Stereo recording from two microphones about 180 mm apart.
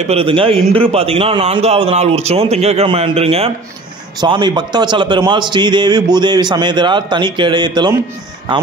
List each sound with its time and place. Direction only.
0.0 s a man's voice: 35° right (ahead or behind)